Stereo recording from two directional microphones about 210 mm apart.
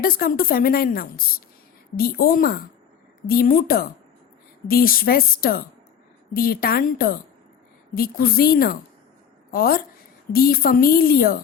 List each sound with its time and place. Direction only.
0.0 s a woman's voice: 45° left (ahead or behind)